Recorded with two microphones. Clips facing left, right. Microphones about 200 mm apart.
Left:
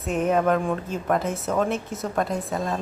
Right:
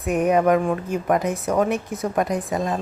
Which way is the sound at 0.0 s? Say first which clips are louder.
Right 3 dB; 15° right (ahead or behind).